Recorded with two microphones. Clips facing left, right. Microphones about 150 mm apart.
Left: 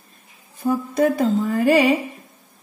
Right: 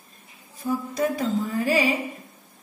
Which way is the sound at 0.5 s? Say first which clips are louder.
Left 6 dB; 60° left (ahead or behind).